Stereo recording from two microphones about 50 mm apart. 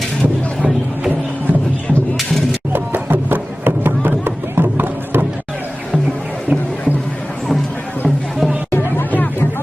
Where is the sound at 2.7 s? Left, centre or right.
Right.